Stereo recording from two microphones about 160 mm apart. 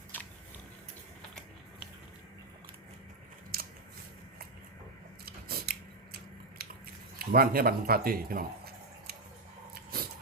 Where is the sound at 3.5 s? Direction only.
65° right (ahead or behind).